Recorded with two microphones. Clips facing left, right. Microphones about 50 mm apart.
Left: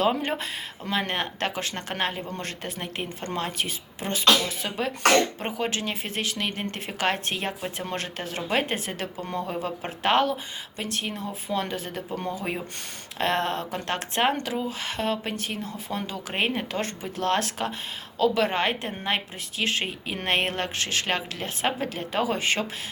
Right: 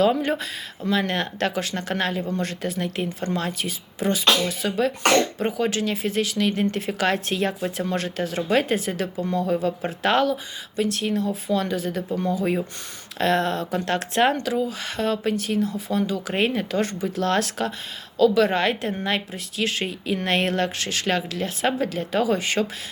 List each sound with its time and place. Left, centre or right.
0.0 s speech: left
5.4 s speech: left
13.1 s speech: left
14.3 s speech: left